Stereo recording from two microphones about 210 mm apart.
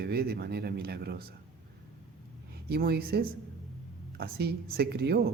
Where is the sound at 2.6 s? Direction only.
50° right (ahead or behind).